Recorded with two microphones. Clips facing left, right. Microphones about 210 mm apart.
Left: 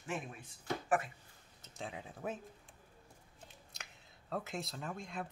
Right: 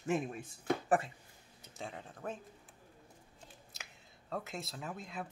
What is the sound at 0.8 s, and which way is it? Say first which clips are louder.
Speech: right 1 dB; 30° right (ahead or behind).